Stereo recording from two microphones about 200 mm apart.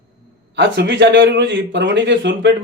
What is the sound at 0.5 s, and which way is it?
A man's voice, 65° right (ahead or behind).